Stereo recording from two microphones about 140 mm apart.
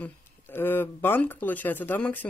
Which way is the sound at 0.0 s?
15° left (ahead or behind).